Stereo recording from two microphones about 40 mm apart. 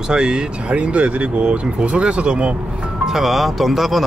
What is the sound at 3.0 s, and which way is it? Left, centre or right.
Speech, centre.